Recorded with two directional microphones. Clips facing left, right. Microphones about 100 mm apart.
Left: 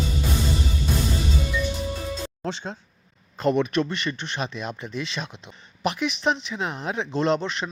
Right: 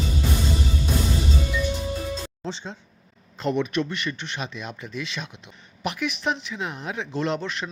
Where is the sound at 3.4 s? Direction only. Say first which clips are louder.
Left 3 dB; 40° left (ahead or behind).